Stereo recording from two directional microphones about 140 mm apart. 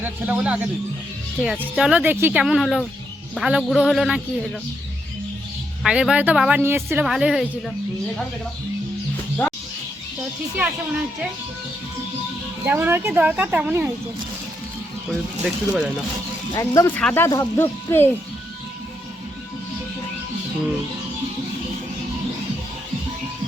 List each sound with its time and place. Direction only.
0.0 s speech: 10° right (ahead or behind)
2.4 s speech: centre (ahead or behind)
5.8 s speech: 5° right (ahead or behind)
6.6 s speech: 15° right (ahead or behind)
7.0 s speech: 5° right (ahead or behind)
12.6 s speech: 15° right (ahead or behind)
15.1 s speech: 5° right (ahead or behind)
16.5 s speech: 25° left (ahead or behind)
17.0 s speech: 10° left (ahead or behind)